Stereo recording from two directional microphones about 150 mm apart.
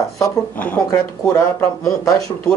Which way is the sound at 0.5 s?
10° left (ahead or behind).